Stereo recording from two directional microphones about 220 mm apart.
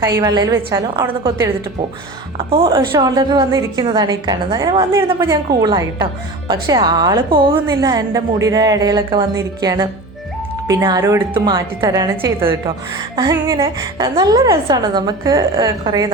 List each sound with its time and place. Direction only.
0.2 s a woman's voice: 15° right (ahead or behind)
2.5 s a woman's voice: 20° right (ahead or behind)